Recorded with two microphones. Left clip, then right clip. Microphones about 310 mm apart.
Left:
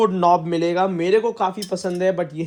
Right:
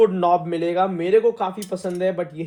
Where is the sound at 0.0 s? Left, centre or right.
Left.